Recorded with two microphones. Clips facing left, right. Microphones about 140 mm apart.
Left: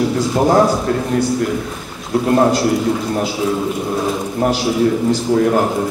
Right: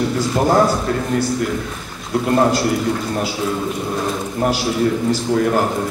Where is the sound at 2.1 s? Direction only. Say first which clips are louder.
Left 2 dB; 5° left (ahead or behind).